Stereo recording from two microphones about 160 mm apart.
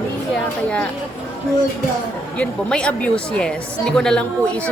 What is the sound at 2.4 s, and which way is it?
Speech, 5° left (ahead or behind).